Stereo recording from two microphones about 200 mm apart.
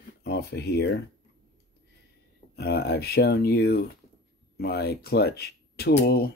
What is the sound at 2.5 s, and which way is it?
Speech, 55° left (ahead or behind).